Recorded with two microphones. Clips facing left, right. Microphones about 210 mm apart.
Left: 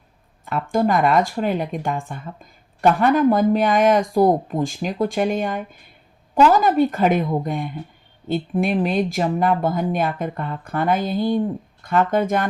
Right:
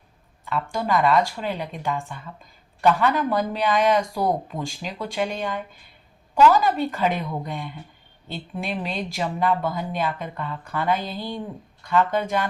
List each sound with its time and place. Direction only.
0.4 s speech: 50° left (ahead or behind)